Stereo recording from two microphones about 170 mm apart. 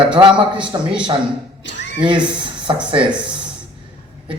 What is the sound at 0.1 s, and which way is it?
Speech, 30° right (ahead or behind).